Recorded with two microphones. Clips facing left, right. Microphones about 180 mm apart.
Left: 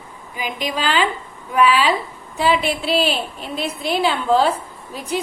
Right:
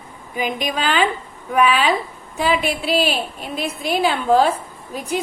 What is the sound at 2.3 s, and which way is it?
Speech, 15° right (ahead or behind).